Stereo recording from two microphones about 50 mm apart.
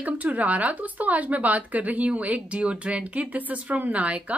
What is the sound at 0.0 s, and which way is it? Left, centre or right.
Speech, right.